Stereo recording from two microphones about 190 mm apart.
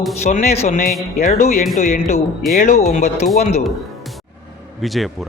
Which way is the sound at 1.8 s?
50° left (ahead or behind).